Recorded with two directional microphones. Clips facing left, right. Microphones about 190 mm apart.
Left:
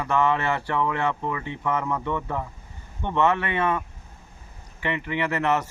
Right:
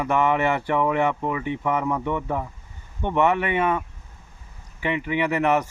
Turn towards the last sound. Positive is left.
turn(degrees=-15)  # may be behind; listen again after turning